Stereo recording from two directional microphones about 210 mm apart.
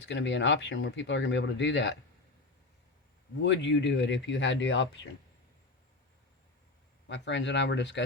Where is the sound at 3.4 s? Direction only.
60° left (ahead or behind).